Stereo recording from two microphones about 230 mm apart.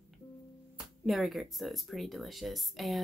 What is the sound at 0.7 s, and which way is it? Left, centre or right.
Speech, centre.